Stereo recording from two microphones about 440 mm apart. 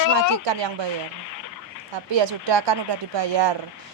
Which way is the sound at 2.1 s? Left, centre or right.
Right.